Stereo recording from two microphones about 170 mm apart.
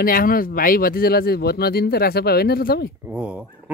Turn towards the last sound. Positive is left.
turn(degrees=-5)  # may be behind; listen again after turning